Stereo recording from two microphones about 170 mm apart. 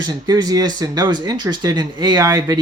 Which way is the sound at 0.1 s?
25° right (ahead or behind).